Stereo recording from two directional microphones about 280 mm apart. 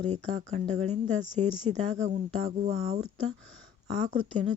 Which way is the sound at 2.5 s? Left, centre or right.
Right.